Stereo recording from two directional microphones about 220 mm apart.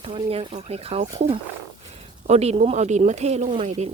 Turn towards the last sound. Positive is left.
turn(degrees=-30)  # may be behind; listen again after turning